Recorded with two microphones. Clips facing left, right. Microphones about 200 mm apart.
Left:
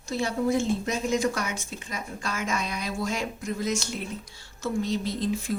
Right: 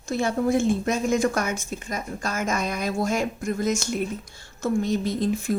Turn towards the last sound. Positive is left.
turn(degrees=-50)  # may be behind; listen again after turning